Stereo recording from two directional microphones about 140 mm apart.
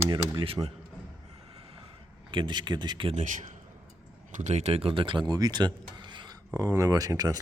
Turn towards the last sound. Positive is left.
turn(degrees=-25)  # may be behind; listen again after turning